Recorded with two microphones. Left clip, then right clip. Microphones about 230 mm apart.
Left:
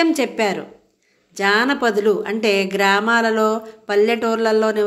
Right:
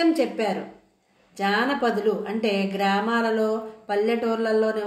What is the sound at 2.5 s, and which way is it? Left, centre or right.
Speech, left.